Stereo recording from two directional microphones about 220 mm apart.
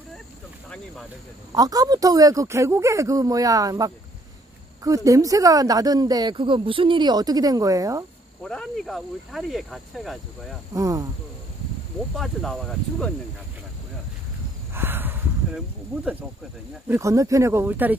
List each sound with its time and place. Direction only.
1.5 s speech: 15° right (ahead or behind)
8.5 s speech: centre (ahead or behind)
10.7 s speech: 15° right (ahead or behind)
12.2 s speech: centre (ahead or behind)
14.7 s a sound: 10° right (ahead or behind)
16.8 s speech: 10° right (ahead or behind)